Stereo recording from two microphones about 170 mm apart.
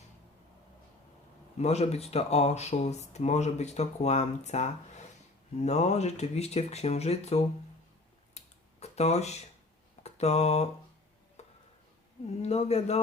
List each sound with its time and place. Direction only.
1.5 s speech: 40° left (ahead or behind)
8.4 s a sound: 40° left (ahead or behind)
10.0 s speech: 40° left (ahead or behind)
11.4 s music: 40° left (ahead or behind)
12.4 s speech: 40° left (ahead or behind)